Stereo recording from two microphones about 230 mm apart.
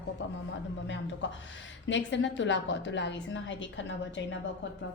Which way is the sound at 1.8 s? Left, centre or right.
Left.